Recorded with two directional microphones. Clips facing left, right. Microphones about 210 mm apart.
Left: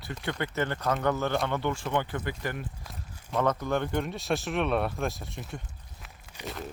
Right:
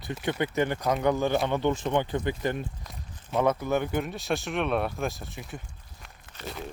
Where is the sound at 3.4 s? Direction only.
10° right (ahead or behind).